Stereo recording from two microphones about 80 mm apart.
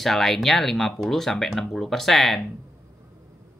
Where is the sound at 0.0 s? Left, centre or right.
Centre.